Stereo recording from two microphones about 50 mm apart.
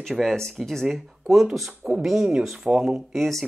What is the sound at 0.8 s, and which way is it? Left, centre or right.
Speech, centre.